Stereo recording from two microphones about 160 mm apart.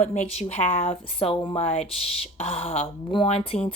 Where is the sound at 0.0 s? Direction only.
45° left (ahead or behind).